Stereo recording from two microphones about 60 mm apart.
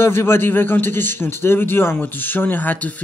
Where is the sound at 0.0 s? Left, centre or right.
Left.